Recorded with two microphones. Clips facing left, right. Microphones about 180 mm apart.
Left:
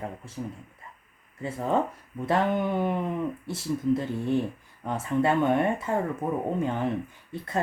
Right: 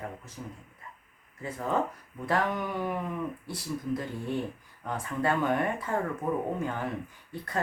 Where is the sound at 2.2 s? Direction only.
25° left (ahead or behind).